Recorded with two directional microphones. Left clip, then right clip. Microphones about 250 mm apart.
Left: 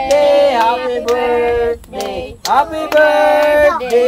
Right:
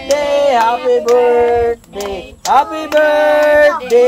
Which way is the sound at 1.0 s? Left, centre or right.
Centre.